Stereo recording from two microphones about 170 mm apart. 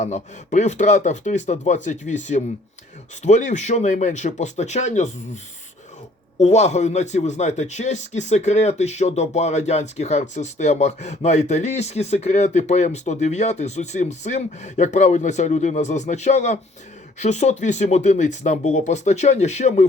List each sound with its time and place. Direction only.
0.0 s speech: 45° left (ahead or behind)
6.4 s speech: 40° left (ahead or behind)